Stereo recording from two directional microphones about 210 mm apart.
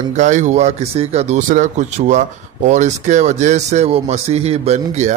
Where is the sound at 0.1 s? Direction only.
35° right (ahead or behind).